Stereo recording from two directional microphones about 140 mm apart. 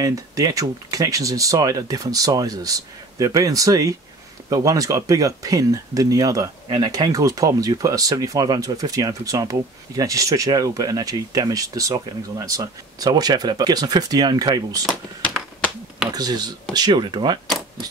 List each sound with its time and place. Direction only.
0.0 s speech: 25° right (ahead or behind)
16.1 s speech: 30° right (ahead or behind)